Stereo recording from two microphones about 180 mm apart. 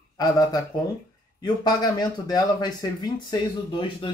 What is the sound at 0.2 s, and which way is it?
Speech, 20° left (ahead or behind).